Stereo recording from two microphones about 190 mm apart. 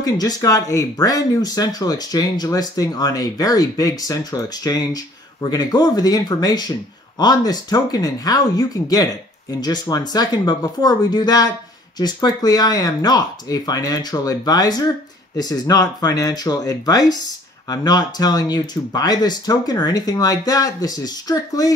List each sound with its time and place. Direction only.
0.0 s speech: 20° left (ahead or behind)